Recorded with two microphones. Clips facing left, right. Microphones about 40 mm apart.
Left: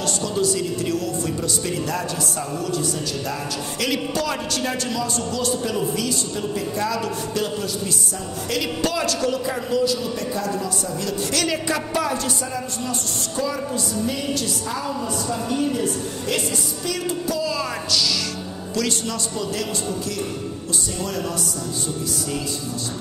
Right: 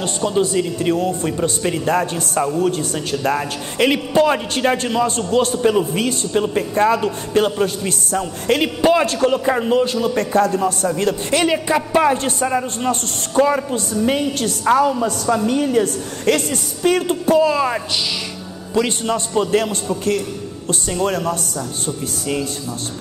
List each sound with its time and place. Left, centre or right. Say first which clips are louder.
0.0 s a man's voice: right 4 dB; right
3.8 s a man's voice: right 9 dB; right
11.3 s a woman's voice: right 7 dB; right
11.9 s a man's voice: right 7 dB; right